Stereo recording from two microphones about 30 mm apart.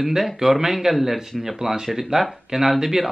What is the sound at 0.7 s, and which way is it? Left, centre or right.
A man's voice, centre.